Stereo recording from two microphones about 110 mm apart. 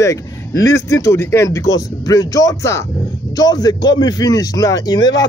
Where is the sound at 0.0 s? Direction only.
30° left (ahead or behind).